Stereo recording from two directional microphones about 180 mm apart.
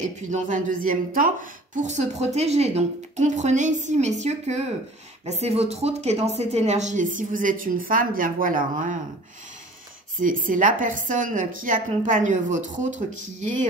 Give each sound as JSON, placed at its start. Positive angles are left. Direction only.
{"t": 0.0, "sound": "a woman's voice", "side_deg": -45}
{"t": 10.2, "sound": "speech", "side_deg": -45}